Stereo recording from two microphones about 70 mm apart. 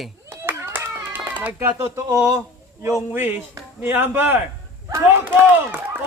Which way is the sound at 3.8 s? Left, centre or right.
Right.